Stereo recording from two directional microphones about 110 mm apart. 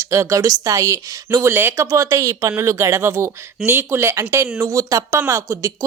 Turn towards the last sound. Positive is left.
turn(degrees=-25)  # may be behind; listen again after turning